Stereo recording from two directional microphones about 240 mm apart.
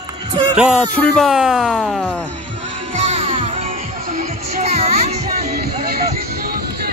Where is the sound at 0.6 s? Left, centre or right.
Centre.